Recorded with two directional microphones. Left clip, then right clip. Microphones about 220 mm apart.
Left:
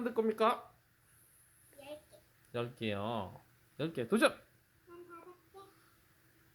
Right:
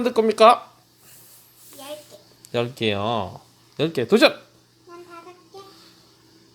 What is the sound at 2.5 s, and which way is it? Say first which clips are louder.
Speech: right 15 dB; 5° right (ahead or behind).